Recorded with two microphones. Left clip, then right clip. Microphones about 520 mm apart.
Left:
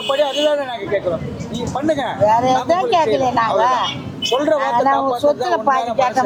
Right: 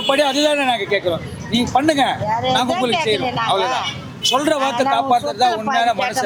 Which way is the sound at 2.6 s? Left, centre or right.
Centre.